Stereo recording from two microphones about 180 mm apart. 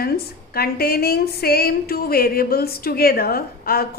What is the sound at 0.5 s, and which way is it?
A woman's voice, 60° left (ahead or behind).